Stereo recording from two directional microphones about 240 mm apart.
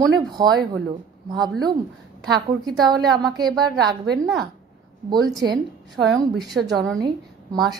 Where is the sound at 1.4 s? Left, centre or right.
Centre.